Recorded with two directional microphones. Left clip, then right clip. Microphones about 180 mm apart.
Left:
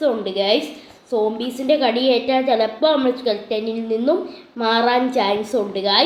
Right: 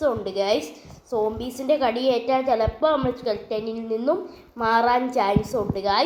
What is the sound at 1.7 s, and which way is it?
A woman's voice, 10° right (ahead or behind).